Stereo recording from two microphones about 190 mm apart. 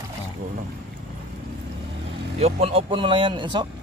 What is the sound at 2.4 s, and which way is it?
Speech, 30° right (ahead or behind).